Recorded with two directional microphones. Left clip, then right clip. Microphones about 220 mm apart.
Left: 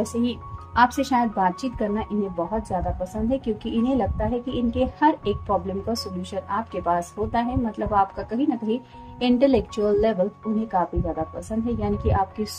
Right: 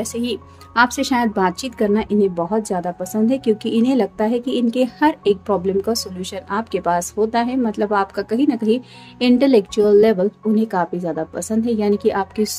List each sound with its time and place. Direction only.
0.0 s speech: 35° right (ahead or behind)